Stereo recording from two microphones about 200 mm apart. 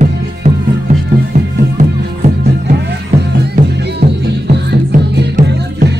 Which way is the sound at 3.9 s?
55° right (ahead or behind).